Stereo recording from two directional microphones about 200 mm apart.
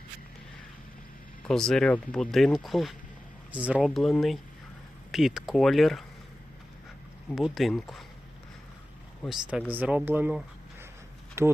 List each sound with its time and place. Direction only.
1.4 s speech: 5° left (ahead or behind)
7.3 s speech: centre (ahead or behind)
9.2 s speech: 5° right (ahead or behind)